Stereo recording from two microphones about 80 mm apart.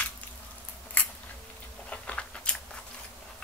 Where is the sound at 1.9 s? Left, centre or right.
Centre.